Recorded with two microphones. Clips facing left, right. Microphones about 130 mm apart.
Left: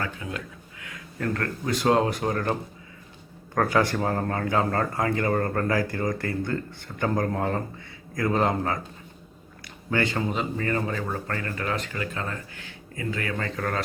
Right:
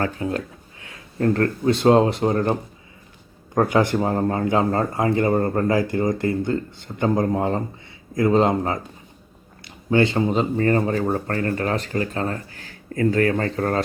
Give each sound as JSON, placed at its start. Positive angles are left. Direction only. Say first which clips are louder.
{"t": 0.0, "sound": "speech", "louder": "right 8 dB", "side_deg": -40}
{"t": 9.9, "sound": "speech", "louder": "right 7 dB", "side_deg": -25}